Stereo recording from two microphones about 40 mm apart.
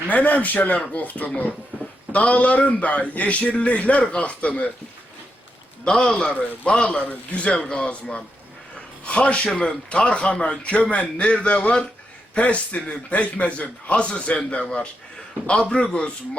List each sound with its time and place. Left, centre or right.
0.1 s a man's voice: left
5.8 s a man's voice: left
6.3 s a man's voice: left